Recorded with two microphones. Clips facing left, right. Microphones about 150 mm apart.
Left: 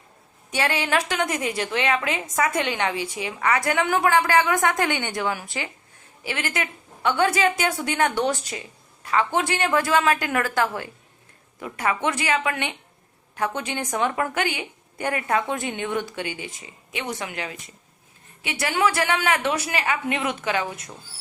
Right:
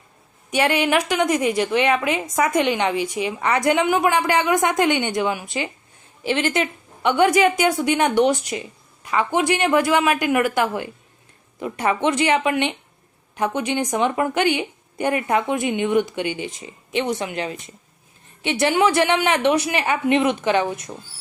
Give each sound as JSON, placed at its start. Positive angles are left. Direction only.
{"t": 0.5, "sound": "a woman's voice", "side_deg": -15}